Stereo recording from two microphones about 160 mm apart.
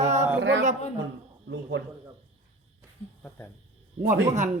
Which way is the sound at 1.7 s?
90° right.